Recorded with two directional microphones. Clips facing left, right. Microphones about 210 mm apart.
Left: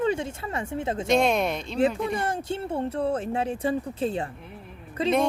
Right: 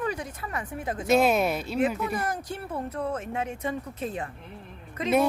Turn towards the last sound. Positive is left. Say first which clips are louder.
# left 3 dB
turn(degrees=30)  # may be behind; listen again after turning